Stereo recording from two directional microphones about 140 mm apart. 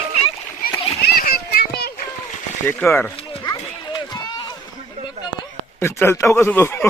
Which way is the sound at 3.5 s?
30° left (ahead or behind).